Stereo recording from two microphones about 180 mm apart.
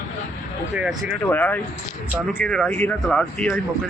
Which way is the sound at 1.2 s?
10° left (ahead or behind).